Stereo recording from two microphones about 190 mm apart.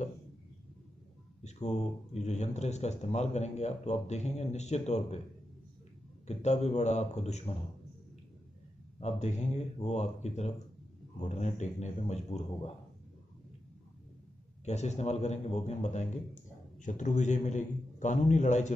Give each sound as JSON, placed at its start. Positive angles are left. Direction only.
{"t": 1.4, "sound": "speech", "side_deg": 35}
{"t": 6.2, "sound": "speech", "side_deg": 35}
{"t": 9.0, "sound": "speech", "side_deg": 35}
{"t": 14.6, "sound": "speech", "side_deg": 35}